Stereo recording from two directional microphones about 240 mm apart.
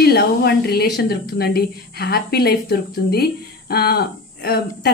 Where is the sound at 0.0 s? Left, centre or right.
Left.